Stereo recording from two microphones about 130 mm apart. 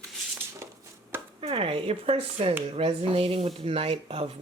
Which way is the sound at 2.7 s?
50° right (ahead or behind).